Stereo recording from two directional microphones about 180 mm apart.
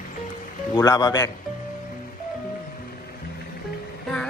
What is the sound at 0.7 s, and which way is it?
Speech, 20° left (ahead or behind).